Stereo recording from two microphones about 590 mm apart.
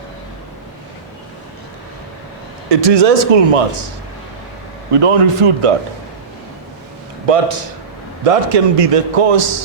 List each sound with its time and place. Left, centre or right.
2.6 s a man's voice: right
7.3 s a man's voice: right